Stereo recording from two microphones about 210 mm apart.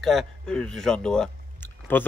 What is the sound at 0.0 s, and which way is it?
A man's voice, centre (ahead or behind).